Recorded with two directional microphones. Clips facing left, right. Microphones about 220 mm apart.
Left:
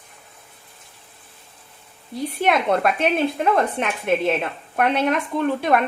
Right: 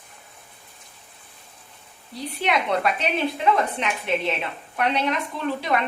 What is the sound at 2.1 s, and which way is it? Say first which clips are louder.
A woman's voice: left 4 dB; 50° left (ahead or behind).